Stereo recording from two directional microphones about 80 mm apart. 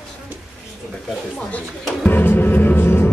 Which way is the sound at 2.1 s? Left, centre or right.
Left.